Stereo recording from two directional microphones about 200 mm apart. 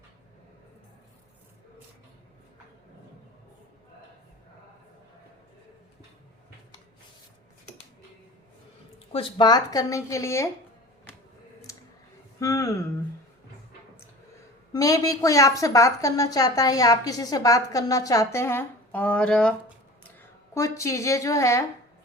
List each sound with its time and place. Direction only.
9.1 s a woman's voice: 25° left (ahead or behind)
12.4 s a sound: 15° left (ahead or behind)
14.7 s a woman's voice: 15° left (ahead or behind)